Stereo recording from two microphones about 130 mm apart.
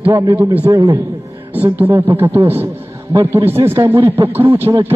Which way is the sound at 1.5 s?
15° right (ahead or behind).